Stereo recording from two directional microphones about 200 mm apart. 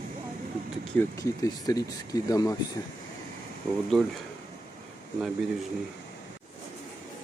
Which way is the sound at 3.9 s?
Centre (ahead or behind).